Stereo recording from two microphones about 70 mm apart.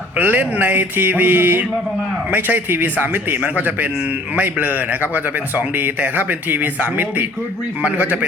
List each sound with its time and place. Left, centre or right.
0.2 s speech: right